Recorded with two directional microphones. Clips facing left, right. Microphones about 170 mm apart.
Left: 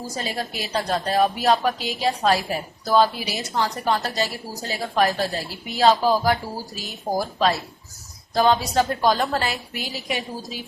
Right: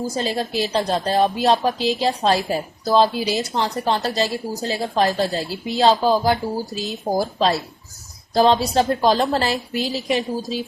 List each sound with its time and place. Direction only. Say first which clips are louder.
0.2 s a woman's voice: right 5 dB; 30° right (ahead or behind)